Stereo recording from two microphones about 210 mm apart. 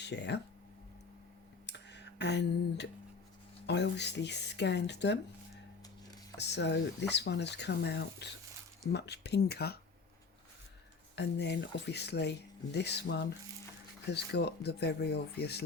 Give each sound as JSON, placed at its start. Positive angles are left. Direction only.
{"t": 0.0, "sound": "speech", "side_deg": 55}
{"t": 1.6, "sound": "a sound", "side_deg": 55}
{"t": 3.7, "sound": "speech", "side_deg": 55}
{"t": 6.3, "sound": "speech", "side_deg": 55}
{"t": 11.1, "sound": "speech", "side_deg": 55}